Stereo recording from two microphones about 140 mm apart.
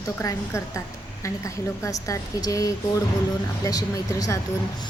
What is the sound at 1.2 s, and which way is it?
Speech, 20° left (ahead or behind).